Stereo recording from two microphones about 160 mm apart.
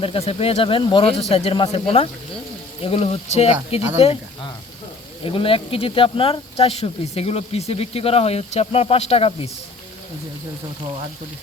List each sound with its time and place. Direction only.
0.0 s speech: 35° left (ahead or behind)
5.2 s speech: 35° left (ahead or behind)